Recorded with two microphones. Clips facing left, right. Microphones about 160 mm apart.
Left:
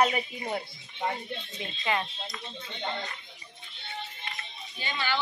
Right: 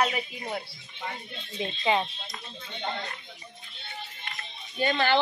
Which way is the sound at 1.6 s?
20° right (ahead or behind).